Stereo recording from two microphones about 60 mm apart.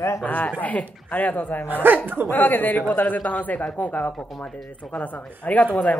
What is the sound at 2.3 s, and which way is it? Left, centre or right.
A man's voice, left.